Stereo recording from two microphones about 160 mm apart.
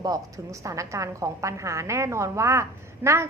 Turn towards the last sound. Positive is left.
turn(degrees=-20)  # may be behind; listen again after turning